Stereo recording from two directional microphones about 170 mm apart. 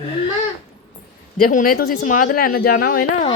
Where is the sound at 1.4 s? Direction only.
55° left (ahead or behind).